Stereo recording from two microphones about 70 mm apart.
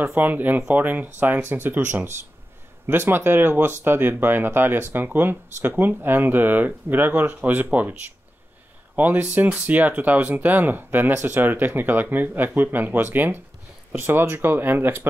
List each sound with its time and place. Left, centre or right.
0.0 s speech: right
8.9 s speech: right